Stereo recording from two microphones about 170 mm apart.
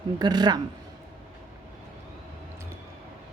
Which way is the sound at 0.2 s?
25° right (ahead or behind).